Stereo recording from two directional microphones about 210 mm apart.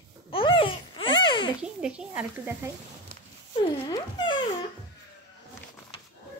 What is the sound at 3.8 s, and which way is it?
Music, 20° left (ahead or behind).